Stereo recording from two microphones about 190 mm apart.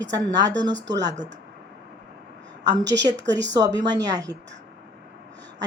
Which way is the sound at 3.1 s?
65° right (ahead or behind).